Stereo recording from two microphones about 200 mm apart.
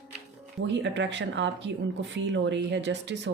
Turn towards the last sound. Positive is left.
turn(degrees=-60)  # may be behind; listen again after turning